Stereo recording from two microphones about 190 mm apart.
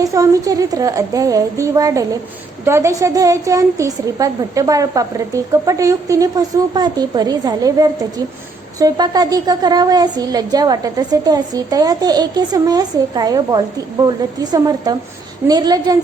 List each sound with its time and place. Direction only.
0.0 s a woman's voice: 20° right (ahead or behind)